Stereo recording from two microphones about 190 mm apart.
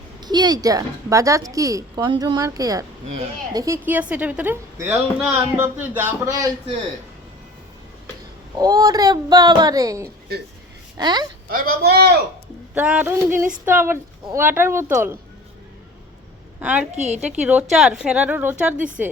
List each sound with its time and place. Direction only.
0.2 s a woman's voice: 20° right (ahead or behind)
8.5 s a woman's voice: 20° right (ahead or behind)
11.4 s speech: 50° right (ahead or behind)
12.7 s a woman's voice: 5° right (ahead or behind)
16.6 s a woman's voice: 10° right (ahead or behind)
16.9 s a woman's voice: 35° right (ahead or behind)
17.4 s a woman's voice: 5° right (ahead or behind)